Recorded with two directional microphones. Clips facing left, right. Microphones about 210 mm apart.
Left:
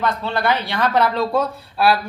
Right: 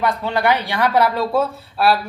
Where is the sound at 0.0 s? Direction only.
15° right (ahead or behind).